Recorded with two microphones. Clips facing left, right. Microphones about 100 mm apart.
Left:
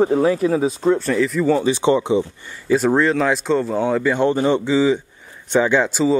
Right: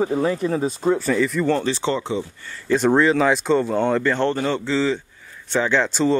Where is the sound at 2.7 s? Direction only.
Centre (ahead or behind).